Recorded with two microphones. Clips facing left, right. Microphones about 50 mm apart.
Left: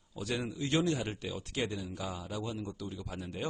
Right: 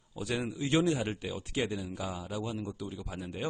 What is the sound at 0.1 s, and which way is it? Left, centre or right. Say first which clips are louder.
Speech: right 2 dB; centre.